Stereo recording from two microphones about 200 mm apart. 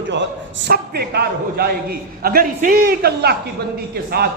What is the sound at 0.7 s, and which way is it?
A man's voice, 50° right (ahead or behind).